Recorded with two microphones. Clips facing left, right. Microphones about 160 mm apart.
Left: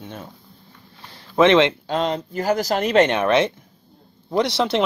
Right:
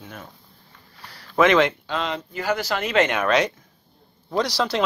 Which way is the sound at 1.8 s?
40° left (ahead or behind).